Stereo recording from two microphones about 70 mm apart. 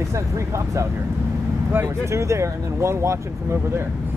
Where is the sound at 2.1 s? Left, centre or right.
Right.